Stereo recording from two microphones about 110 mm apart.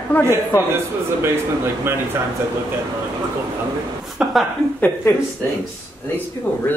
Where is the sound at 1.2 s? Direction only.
20° right (ahead or behind).